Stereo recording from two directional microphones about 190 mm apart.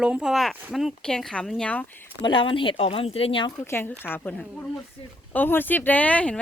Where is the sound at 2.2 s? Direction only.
25° left (ahead or behind).